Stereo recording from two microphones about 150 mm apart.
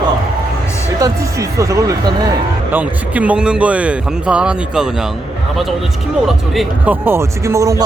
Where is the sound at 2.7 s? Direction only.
10° right (ahead or behind).